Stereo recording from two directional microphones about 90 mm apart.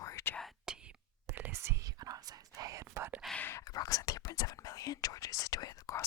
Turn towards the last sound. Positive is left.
turn(degrees=35)  # may be behind; listen again after turning